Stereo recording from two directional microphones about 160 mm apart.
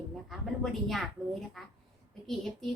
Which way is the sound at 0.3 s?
Centre (ahead or behind).